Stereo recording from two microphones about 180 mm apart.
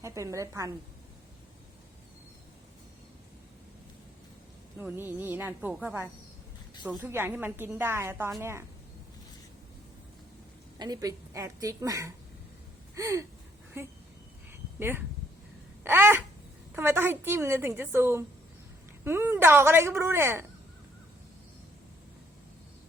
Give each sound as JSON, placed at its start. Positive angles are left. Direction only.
{"t": 0.0, "sound": "a woman's voice", "side_deg": -15}
{"t": 4.8, "sound": "a woman's voice", "side_deg": -10}
{"t": 10.8, "sound": "a woman's voice", "side_deg": -20}
{"t": 15.8, "sound": "a sound", "side_deg": -10}
{"t": 16.7, "sound": "a woman's voice", "side_deg": -15}